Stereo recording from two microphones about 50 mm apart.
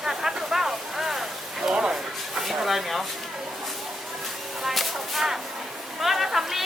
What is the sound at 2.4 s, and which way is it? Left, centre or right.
Speech, centre.